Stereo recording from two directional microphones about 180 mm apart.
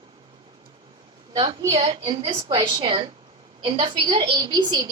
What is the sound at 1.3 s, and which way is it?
A woman's voice, 20° right (ahead or behind).